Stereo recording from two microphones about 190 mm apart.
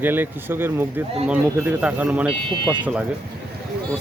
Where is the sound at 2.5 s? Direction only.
25° right (ahead or behind).